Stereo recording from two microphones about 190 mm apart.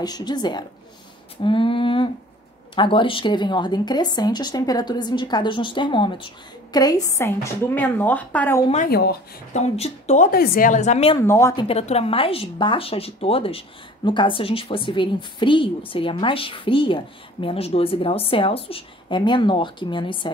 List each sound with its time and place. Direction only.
0.0 s speech: 20° left (ahead or behind)
8.8 s speech: 55° left (ahead or behind)
9.5 s a woman's voice: 35° left (ahead or behind)
11.1 s speech: 15° left (ahead or behind)
11.6 s speech: 30° left (ahead or behind)